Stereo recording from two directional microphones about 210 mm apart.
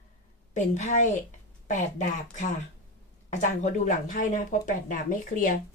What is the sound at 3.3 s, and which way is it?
Speech, 35° left (ahead or behind).